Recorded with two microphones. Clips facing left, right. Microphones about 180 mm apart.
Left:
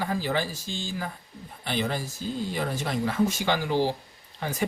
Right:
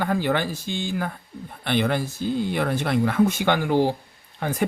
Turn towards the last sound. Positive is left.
turn(degrees=-55)  # may be behind; listen again after turning